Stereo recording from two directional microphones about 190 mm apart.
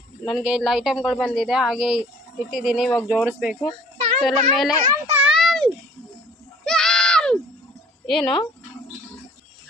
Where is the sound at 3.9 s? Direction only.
35° right (ahead or behind).